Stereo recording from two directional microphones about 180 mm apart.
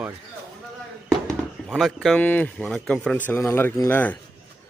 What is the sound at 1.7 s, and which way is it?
A man's voice, centre (ahead or behind).